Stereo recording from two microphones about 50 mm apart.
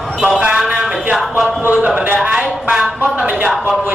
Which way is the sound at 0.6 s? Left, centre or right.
Centre.